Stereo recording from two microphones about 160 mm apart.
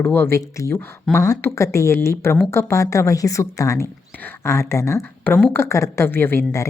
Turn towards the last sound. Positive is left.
turn(degrees=15)  # may be behind; listen again after turning